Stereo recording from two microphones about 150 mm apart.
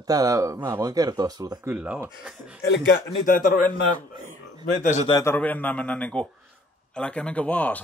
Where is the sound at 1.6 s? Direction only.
10° right (ahead or behind).